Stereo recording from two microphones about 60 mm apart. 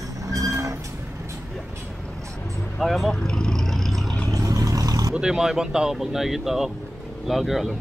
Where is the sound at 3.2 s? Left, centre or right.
Centre.